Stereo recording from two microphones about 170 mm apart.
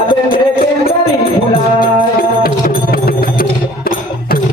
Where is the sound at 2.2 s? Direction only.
60° left (ahead or behind).